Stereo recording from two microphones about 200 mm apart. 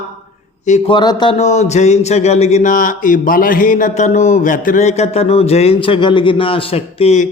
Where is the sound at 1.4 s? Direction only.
35° left (ahead or behind).